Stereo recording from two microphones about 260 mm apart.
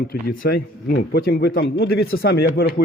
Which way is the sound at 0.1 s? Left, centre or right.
Left.